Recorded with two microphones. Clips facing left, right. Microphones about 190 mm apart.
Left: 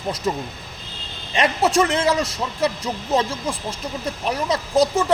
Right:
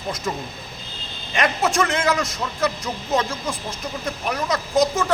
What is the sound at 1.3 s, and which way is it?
A man's voice, 30° left (ahead or behind).